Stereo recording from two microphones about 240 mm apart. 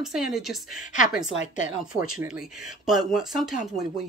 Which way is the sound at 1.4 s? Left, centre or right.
Left.